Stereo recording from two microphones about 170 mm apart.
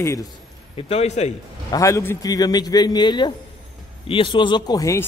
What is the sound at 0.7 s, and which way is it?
Speech, 35° left (ahead or behind).